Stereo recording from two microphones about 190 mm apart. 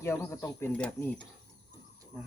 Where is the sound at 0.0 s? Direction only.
15° left (ahead or behind).